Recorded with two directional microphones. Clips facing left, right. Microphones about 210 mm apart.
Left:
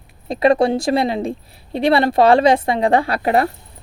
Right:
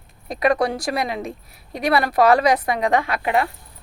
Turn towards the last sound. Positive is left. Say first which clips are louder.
# left 4 dB
turn(degrees=40)  # may be behind; listen again after turning